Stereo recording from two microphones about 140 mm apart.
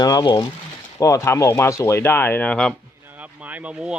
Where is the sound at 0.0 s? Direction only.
30° left (ahead or behind); by 2.7 s 5° left (ahead or behind).